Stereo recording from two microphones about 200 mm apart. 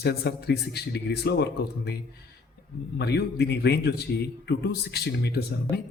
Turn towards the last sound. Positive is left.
turn(degrees=50)  # may be behind; listen again after turning